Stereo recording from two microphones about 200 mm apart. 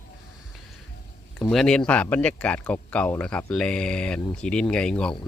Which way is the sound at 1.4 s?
5° left (ahead or behind).